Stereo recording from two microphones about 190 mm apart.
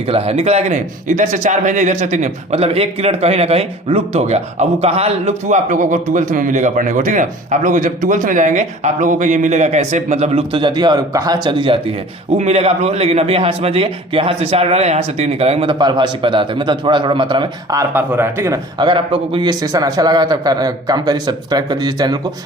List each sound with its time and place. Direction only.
0.1 s a man's voice: 30° right (ahead or behind)